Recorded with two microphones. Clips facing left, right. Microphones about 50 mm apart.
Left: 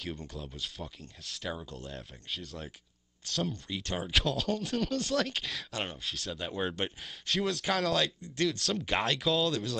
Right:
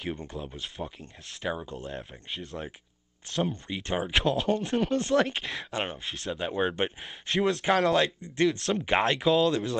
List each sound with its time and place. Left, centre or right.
0.0 s speech: right
5.7 s speech: right
6.0 s speech: centre
8.5 s speech: centre
8.8 s speech: right